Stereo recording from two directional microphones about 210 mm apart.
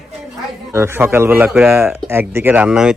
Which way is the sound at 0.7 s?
10° right (ahead or behind).